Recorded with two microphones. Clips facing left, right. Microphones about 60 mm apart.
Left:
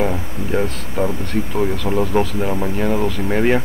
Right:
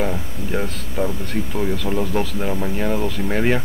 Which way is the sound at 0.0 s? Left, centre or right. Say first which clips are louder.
Left 3 dB; centre.